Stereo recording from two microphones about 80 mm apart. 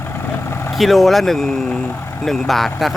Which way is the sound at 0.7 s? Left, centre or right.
Centre.